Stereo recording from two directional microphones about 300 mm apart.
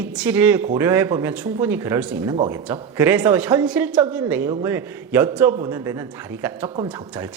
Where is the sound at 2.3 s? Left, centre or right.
Centre.